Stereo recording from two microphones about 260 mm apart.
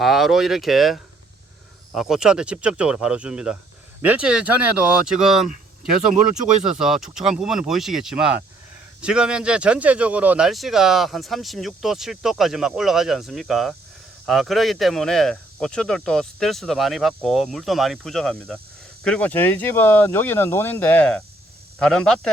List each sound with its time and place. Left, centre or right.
0.0 s speech: centre